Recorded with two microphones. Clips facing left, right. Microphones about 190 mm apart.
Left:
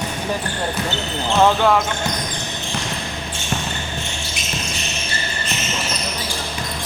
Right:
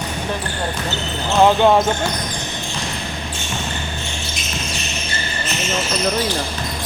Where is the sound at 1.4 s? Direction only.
25° right (ahead or behind).